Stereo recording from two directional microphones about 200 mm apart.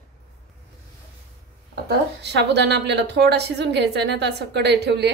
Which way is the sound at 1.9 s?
60° right (ahead or behind).